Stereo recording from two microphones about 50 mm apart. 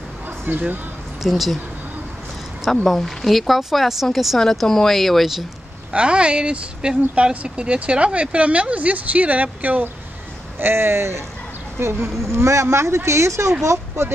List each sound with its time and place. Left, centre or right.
0.5 s speech: right
1.2 s speech: centre
2.7 s speech: centre
4.4 s speech: centre
5.9 s speech: right
10.6 s speech: right
12.3 s speech: right